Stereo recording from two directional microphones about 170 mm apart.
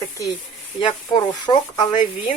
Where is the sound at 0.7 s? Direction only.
25° left (ahead or behind).